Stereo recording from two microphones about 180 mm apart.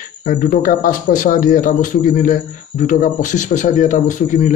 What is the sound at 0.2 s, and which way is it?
Speech, 50° left (ahead or behind).